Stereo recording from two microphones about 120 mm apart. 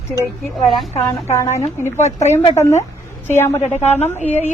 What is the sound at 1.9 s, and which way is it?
Speech, 75° left (ahead or behind).